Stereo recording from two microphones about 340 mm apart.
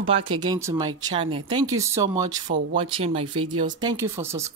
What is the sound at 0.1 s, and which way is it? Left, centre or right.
Speech, centre.